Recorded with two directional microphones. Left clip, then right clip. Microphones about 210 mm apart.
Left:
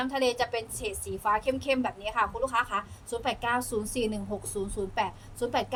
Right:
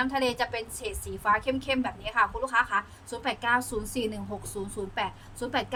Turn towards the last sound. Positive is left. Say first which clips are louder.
# left 1 dB
turn(degrees=-15)  # may be behind; listen again after turning